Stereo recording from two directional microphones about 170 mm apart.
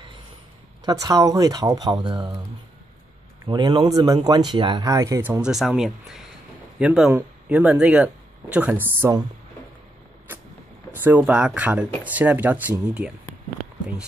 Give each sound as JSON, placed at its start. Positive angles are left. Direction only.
{"t": 0.8, "sound": "speech", "side_deg": -20}
{"t": 3.4, "sound": "speech", "side_deg": -25}
{"t": 11.1, "sound": "speech", "side_deg": -10}